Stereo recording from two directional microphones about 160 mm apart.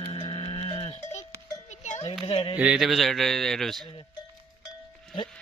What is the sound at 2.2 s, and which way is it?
Speech, 35° left (ahead or behind).